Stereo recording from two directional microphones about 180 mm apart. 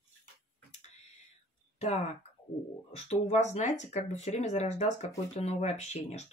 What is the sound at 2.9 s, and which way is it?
Speech, 35° left (ahead or behind).